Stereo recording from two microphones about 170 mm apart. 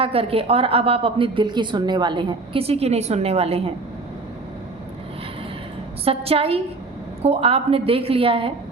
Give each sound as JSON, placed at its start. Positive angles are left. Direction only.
{"t": 0.0, "sound": "a woman's voice", "side_deg": -35}
{"t": 6.1, "sound": "a woman's voice", "side_deg": -35}